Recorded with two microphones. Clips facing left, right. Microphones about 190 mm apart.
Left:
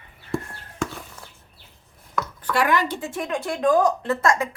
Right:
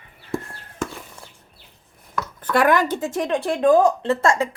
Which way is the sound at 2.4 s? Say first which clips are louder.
Right 4 dB; 50° right (ahead or behind).